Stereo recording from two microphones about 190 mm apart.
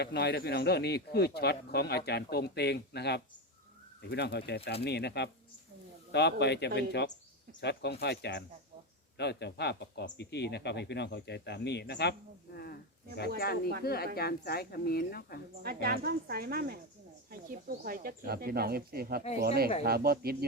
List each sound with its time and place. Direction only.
0.0 s speech: 60° left (ahead or behind)
13.8 s speech: 55° left (ahead or behind)
15.6 s speech: 50° right (ahead or behind)